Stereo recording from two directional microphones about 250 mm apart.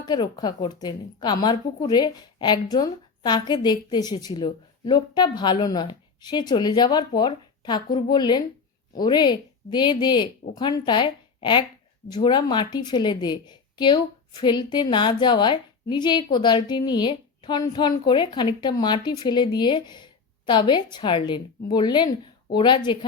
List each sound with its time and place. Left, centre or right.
0.0 s a woman's voice: centre